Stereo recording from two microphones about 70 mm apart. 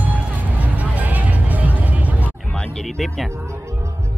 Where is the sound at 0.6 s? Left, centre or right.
Right.